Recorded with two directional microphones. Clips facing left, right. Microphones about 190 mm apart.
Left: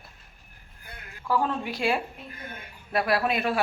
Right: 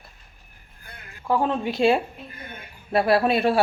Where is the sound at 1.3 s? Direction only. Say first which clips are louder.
Right 4 dB; 25° right (ahead or behind).